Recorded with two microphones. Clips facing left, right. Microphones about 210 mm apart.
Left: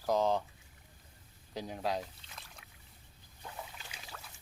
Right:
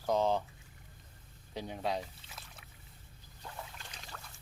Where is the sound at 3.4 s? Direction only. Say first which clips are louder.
Even; 5° left (ahead or behind).